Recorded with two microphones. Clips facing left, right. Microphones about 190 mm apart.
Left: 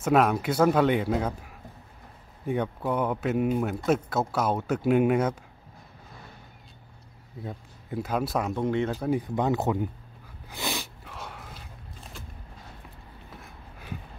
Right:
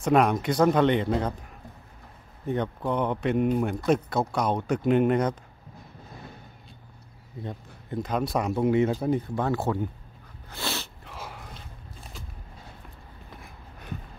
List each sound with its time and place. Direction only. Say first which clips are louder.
0.0 s a man's voice: right 1 dB; 5° left (ahead or behind)
2.4 s a man's voice: even; 10° left (ahead or behind)
7.4 s a man's voice: right 1 dB; 5° left (ahead or behind)
8.9 s speech: right 1 dB; 5° left (ahead or behind)
9.3 s speech: left 1 dB; 20° left (ahead or behind)
10.5 s sneeze: even; 15° left (ahead or behind)
11.1 s wheeze: right 1 dB; centre (ahead or behind)